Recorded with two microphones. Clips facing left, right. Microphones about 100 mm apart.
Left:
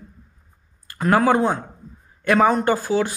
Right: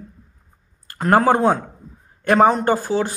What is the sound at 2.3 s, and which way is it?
Speech, 25° right (ahead or behind).